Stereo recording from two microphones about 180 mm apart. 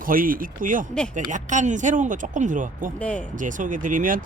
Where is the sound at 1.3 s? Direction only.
45° right (ahead or behind).